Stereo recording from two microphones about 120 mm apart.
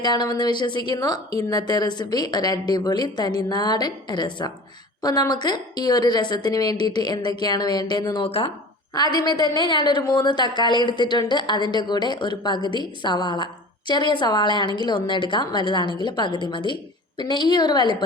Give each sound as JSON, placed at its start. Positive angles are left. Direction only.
{"t": 0.0, "sound": "a woman's voice", "side_deg": 35}
{"t": 9.0, "sound": "a woman's voice", "side_deg": 35}